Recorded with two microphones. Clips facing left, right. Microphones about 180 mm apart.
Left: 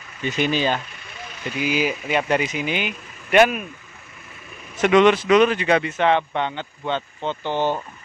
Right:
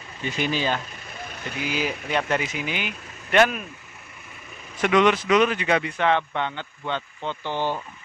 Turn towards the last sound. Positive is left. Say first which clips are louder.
# left 4 dB
turn(degrees=20)  # may be behind; listen again after turning